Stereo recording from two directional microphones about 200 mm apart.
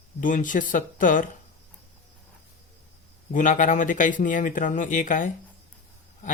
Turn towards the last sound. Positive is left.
turn(degrees=40)  # may be behind; listen again after turning